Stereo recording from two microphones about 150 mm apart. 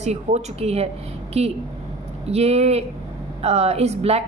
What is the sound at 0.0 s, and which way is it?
A woman's voice, 45° right (ahead or behind).